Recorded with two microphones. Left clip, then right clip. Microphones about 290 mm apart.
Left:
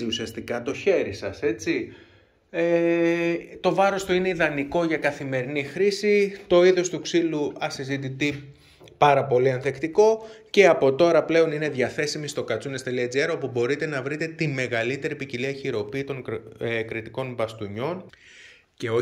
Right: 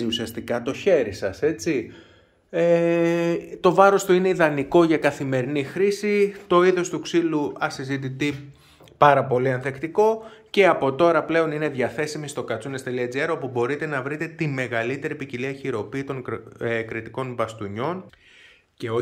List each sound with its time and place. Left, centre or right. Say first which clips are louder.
0.0 s speech: right 2 dB; right